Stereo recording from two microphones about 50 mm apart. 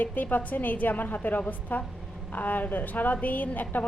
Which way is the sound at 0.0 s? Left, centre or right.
Left.